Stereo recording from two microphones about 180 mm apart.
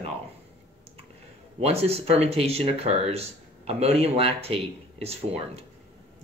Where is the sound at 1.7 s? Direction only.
35° right (ahead or behind).